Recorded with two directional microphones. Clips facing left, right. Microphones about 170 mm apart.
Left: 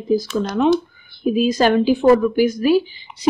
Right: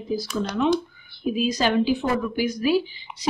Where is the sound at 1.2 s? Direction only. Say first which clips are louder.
Left 7 dB; 50° left (ahead or behind).